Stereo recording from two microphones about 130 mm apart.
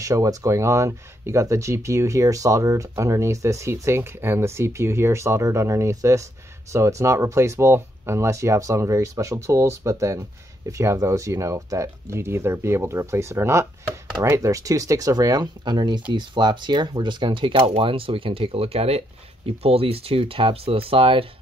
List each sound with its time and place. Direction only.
0.0 s speech: 25° right (ahead or behind); by 21.3 s 45° right (ahead or behind)